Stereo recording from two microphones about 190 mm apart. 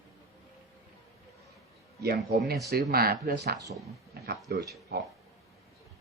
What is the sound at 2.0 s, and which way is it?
Speech, 55° right (ahead or behind).